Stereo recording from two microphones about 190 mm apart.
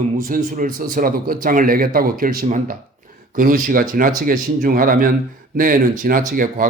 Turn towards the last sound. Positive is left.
turn(degrees=-45)  # may be behind; listen again after turning